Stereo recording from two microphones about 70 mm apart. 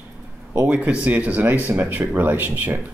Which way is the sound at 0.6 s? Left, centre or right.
Right.